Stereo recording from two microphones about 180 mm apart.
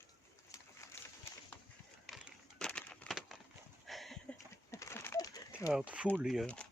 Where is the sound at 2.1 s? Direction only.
Centre (ahead or behind).